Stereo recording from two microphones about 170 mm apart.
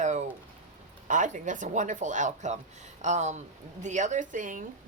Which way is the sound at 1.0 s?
45° right (ahead or behind).